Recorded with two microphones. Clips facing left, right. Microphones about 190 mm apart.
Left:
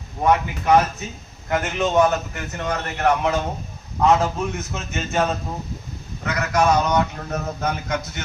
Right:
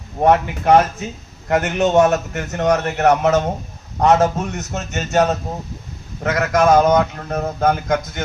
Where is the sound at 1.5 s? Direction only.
75° right (ahead or behind).